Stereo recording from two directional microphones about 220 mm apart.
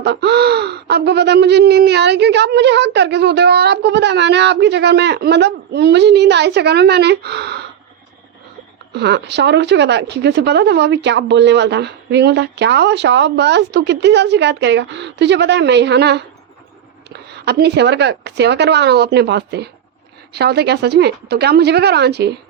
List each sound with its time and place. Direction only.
0.0 s speech: 50° right (ahead or behind)
8.9 s speech: 50° right (ahead or behind)